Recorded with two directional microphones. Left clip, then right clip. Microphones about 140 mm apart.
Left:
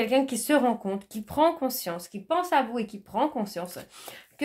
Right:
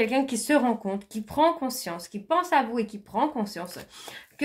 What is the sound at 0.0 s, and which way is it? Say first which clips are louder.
Speech: even; 40° left (ahead or behind).